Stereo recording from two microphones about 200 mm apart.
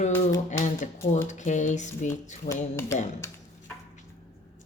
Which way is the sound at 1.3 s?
35° left (ahead or behind).